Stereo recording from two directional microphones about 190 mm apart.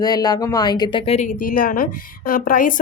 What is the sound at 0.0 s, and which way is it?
Speech, 20° left (ahead or behind).